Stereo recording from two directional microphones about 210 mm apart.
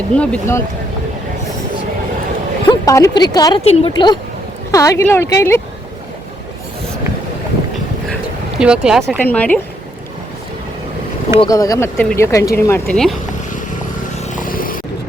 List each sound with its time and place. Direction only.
0.1 s speech: 5° left (ahead or behind)
2.6 s speech: 15° left (ahead or behind)
3.6 s a woman's voice: 30° left (ahead or behind); by 5.6 s 10° left (ahead or behind)
8.5 s speech: 5° right (ahead or behind)
11.3 s speech: 15° left (ahead or behind)
13.5 s vehicle: 35° left (ahead or behind)